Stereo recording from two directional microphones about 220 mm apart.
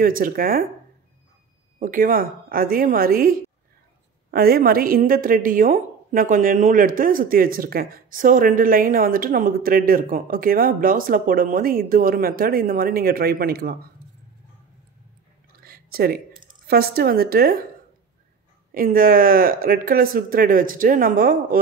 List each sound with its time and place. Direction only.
0.0 s a woman's voice: 40° right (ahead or behind)
1.8 s a woman's voice: 40° right (ahead or behind)
15.6 s a sound: 45° right (ahead or behind)
16.6 s a woman's voice: 45° right (ahead or behind)
18.7 s a woman's voice: 40° right (ahead or behind)